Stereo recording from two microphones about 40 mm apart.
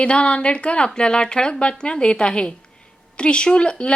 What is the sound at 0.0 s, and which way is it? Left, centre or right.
Speech, left.